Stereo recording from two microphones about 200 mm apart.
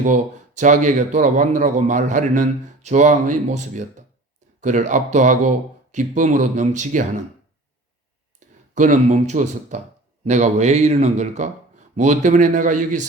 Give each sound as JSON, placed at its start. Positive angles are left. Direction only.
{"t": 0.0, "sound": "a man's voice", "side_deg": -40}
{"t": 8.7, "sound": "a man's voice", "side_deg": -35}